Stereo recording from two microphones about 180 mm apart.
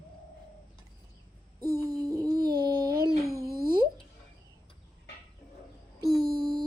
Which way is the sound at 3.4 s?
55° right (ahead or behind).